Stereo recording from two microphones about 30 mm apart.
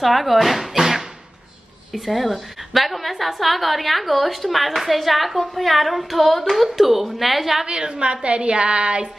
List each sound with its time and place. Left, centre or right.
0.0 s a woman's voice: centre
0.7 s a sound: centre
1.9 s a woman's voice: centre
7.6 s a woman's voice: right